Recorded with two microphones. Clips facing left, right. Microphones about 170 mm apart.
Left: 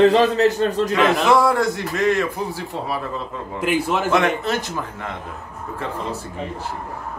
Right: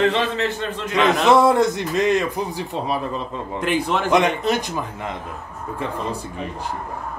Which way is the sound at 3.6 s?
5° left (ahead or behind).